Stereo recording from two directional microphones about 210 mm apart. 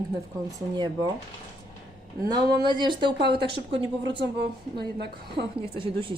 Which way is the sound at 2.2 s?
20° right (ahead or behind).